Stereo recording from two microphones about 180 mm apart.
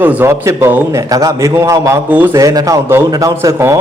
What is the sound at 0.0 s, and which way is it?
A man's voice, 10° right (ahead or behind).